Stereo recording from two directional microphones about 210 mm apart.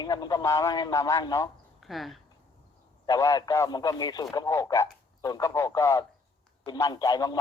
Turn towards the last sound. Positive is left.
turn(degrees=20)  # may be behind; listen again after turning